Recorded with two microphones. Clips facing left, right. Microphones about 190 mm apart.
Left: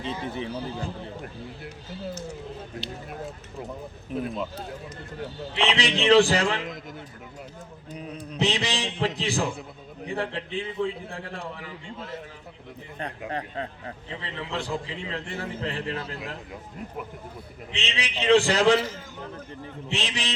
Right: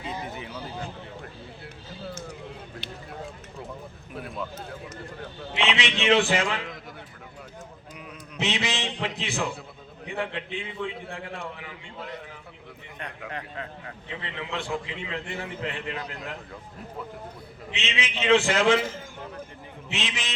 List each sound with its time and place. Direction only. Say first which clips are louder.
0.3 s a man's voice: left 5 dB; 30° left (ahead or behind)
4.1 s speech: left 6 dB; 20° left (ahead or behind)
5.5 s a man's voice: left 2 dB; 35° left (ahead or behind)
7.9 s a man's voice: left 5 dB; 35° left (ahead or behind)
13.0 s a man's voice: left 5 dB; 35° left (ahead or behind)
17.8 s a man's voice: left 1 dB; 35° left (ahead or behind)
19.9 s a man's voice: left 2 dB; 35° left (ahead or behind)